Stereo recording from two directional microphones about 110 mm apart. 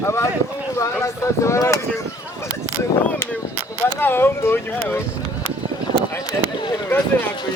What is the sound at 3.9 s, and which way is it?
Speech, 20° left (ahead or behind).